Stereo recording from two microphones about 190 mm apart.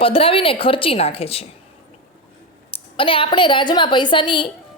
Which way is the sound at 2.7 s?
25° left (ahead or behind).